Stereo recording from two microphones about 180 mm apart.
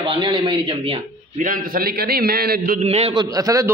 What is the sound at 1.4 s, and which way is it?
A man's voice, 55° right (ahead or behind).